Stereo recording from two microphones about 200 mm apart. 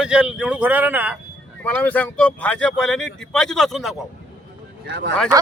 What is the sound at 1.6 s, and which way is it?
Speech, 10° left (ahead or behind).